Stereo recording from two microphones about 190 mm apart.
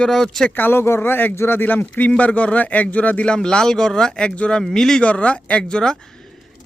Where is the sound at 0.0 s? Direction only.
Centre (ahead or behind).